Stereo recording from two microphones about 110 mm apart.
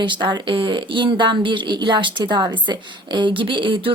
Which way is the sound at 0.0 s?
45° right (ahead or behind).